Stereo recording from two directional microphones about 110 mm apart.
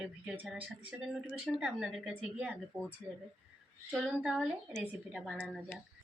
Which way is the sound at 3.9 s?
Centre (ahead or behind).